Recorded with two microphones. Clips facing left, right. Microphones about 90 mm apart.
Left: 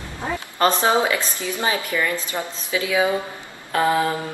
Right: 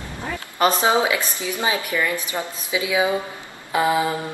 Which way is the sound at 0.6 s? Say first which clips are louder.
Even; 15° right (ahead or behind).